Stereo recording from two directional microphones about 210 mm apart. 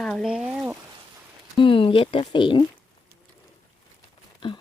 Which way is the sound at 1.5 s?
25° left (ahead or behind).